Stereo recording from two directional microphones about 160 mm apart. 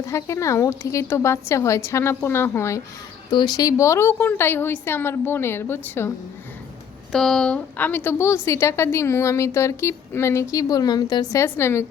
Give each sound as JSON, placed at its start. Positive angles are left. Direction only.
{"t": 0.0, "sound": "a woman's voice", "side_deg": 20}
{"t": 3.2, "sound": "a woman's voice", "side_deg": 25}
{"t": 7.1, "sound": "a woman's voice", "side_deg": 5}